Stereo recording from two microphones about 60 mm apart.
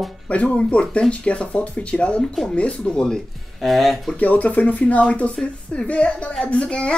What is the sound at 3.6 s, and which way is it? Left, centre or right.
Speech, centre.